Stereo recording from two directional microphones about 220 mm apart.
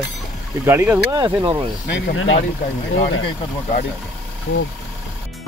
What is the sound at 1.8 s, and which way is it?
Speech, 50° left (ahead or behind).